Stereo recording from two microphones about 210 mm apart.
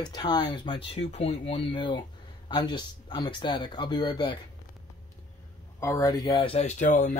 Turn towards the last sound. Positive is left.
turn(degrees=35)  # may be behind; listen again after turning